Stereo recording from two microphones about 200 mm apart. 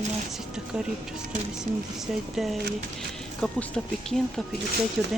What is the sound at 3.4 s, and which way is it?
Speech, 5° left (ahead or behind).